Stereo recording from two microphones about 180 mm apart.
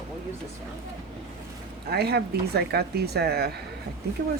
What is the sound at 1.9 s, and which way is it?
Speech, 65° right (ahead or behind).